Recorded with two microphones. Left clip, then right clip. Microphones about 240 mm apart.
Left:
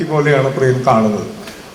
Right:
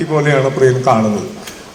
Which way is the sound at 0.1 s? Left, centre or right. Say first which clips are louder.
Even; right.